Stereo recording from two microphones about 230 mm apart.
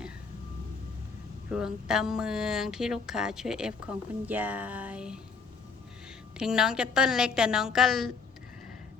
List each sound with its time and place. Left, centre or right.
1.5 s speech: centre
6.3 s speech: centre